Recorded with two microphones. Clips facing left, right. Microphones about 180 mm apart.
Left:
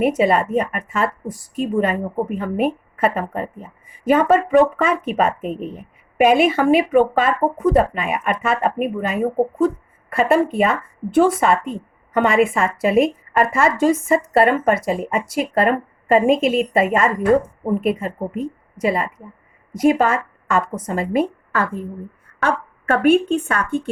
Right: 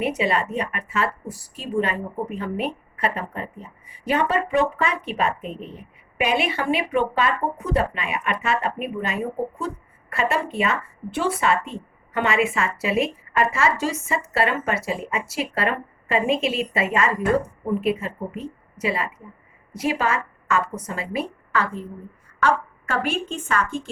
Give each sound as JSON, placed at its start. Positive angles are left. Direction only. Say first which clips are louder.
{"t": 0.0, "sound": "a woman's voice", "louder": "left 6 dB", "side_deg": 50}